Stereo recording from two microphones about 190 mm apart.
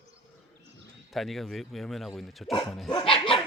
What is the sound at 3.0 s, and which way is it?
Dog, 30° left (ahead or behind).